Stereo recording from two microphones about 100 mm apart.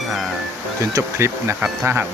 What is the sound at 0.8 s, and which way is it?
Speech, 30° right (ahead or behind).